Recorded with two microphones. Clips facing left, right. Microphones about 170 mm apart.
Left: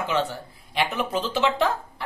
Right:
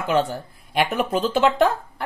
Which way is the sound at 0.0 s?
50° right (ahead or behind).